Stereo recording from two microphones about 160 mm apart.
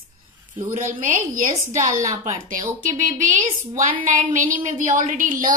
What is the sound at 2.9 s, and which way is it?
A woman's voice, 50° right (ahead or behind).